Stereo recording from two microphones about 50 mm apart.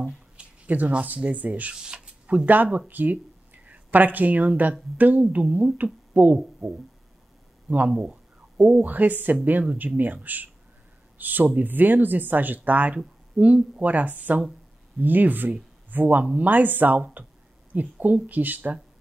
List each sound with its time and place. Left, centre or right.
0.7 s speech: right
1.8 s speech: centre
2.2 s speech: right
6.6 s a sound: centre
7.7 s speech: right